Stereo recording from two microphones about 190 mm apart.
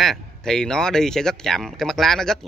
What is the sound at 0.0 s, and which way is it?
Speech, centre (ahead or behind).